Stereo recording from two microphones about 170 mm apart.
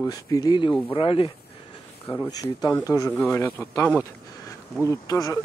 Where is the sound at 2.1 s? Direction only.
20° left (ahead or behind).